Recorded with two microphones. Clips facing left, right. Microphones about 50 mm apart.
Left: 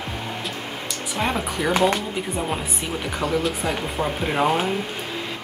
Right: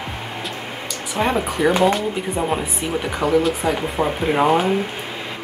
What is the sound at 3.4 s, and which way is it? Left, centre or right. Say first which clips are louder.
Speech: right 4 dB; centre.